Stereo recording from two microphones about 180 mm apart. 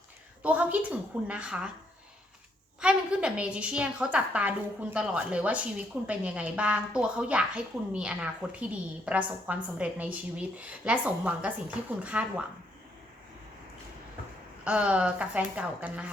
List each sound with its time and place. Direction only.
0.4 s a woman's voice: 10° right (ahead or behind)
2.8 s a woman's voice: 5° right (ahead or behind)
14.6 s a woman's voice: 5° right (ahead or behind)